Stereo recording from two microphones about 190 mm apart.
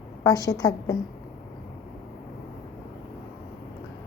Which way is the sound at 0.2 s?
20° left (ahead or behind).